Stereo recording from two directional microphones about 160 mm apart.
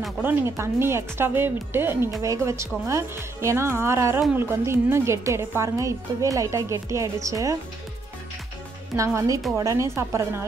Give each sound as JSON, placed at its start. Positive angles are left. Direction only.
{"t": 0.2, "sound": "speech", "side_deg": -15}
{"t": 8.9, "sound": "speech", "side_deg": -20}